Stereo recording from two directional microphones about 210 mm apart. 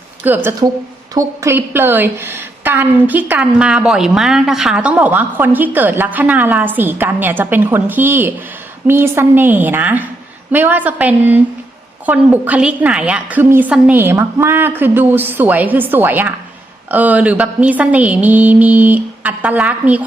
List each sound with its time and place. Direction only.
0.3 s a woman's voice: 10° right (ahead or behind)